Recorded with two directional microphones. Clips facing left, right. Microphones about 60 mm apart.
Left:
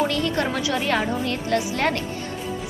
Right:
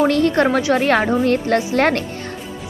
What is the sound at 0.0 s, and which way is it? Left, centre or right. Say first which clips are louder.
A woman's voice: right 8 dB; right.